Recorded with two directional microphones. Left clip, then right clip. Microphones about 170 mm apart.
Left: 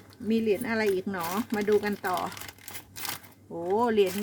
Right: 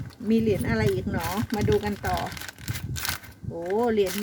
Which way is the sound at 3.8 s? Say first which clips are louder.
Right 1 dB; 15° left (ahead or behind).